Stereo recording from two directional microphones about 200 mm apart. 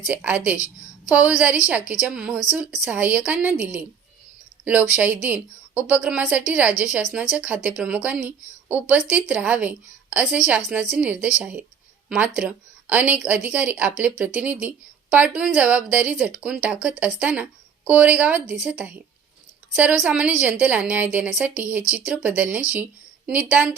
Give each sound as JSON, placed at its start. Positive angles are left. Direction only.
{"t": 0.1, "sound": "a woman's voice", "side_deg": -5}
{"t": 1.9, "sound": "a woman's voice", "side_deg": -5}